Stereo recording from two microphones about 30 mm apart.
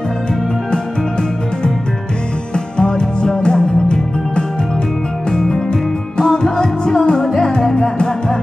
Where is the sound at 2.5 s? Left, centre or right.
Left.